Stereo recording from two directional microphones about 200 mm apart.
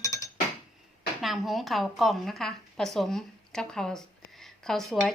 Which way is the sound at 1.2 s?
Centre (ahead or behind).